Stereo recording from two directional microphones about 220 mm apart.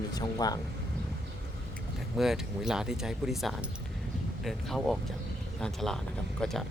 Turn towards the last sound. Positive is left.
turn(degrees=0)  # may be behind; listen again after turning